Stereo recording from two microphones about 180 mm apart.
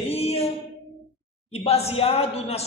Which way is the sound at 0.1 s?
35° left (ahead or behind).